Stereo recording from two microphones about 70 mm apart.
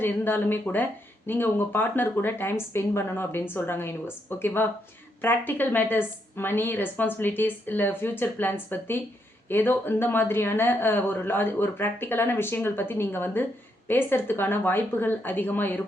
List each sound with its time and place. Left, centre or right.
0.0 s a woman's voice: left